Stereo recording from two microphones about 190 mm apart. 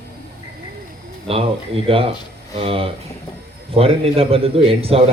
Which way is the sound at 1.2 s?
30° right (ahead or behind).